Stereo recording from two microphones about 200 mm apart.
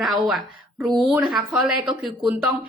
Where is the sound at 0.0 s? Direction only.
Centre (ahead or behind).